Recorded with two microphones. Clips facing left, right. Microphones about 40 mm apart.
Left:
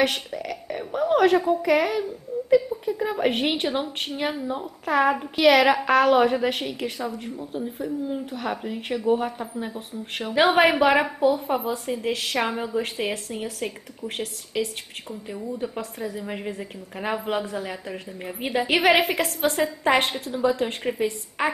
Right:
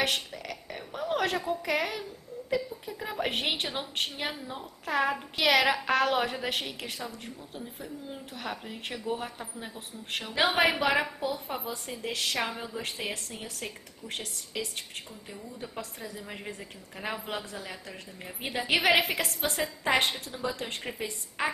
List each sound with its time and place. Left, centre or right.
0.3 s a sound: centre
1.6 s a woman's voice: centre
12.4 s a woman's voice: left
14.5 s a woman's voice: left
15.8 s a woman's voice: centre